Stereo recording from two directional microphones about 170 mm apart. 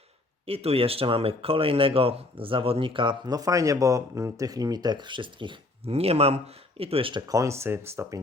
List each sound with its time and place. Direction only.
0.4 s speech: 35° right (ahead or behind); by 8.2 s 15° right (ahead or behind)